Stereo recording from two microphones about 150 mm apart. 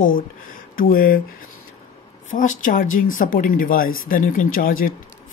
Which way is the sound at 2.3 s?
60° left (ahead or behind).